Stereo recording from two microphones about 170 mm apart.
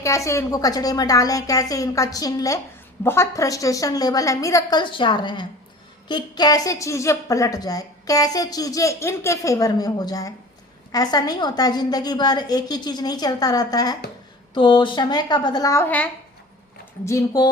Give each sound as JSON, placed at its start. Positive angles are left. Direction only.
{"t": 0.0, "sound": "a woman's voice", "side_deg": 20}
{"t": 17.1, "sound": "a woman's voice", "side_deg": 20}